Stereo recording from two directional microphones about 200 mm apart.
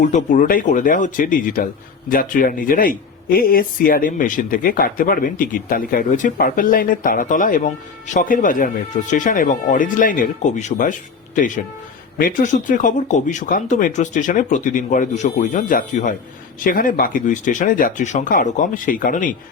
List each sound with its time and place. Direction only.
0.0 s a man's voice: 40° left (ahead or behind)